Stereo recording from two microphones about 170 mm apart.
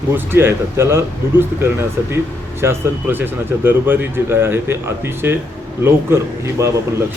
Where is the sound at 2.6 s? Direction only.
15° right (ahead or behind).